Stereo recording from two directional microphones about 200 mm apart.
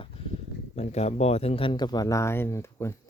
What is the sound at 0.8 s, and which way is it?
Speech, 35° left (ahead or behind).